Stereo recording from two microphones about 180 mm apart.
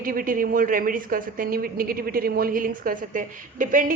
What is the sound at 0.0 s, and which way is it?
A woman's voice, 50° right (ahead or behind).